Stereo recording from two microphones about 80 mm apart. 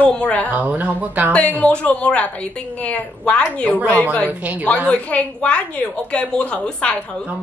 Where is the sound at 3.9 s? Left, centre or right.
Centre.